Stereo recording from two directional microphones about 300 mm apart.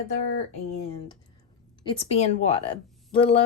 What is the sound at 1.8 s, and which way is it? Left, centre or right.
Speech, centre.